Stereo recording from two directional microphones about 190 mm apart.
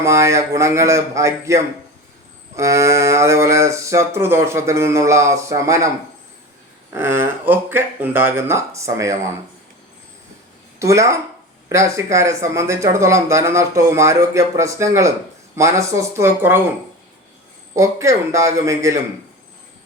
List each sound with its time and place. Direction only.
0.0 s speech: 15° right (ahead or behind)
6.9 s speech: 10° right (ahead or behind)
10.8 s speech: 15° right (ahead or behind)
17.7 s speech: 15° right (ahead or behind)